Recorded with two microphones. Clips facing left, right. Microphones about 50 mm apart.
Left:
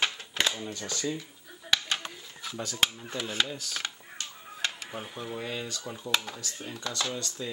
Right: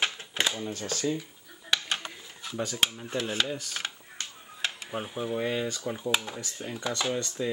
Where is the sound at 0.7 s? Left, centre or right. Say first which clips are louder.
Right 2 dB; right.